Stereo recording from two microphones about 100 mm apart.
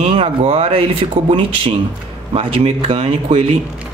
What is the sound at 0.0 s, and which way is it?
Speech, 75° right (ahead or behind).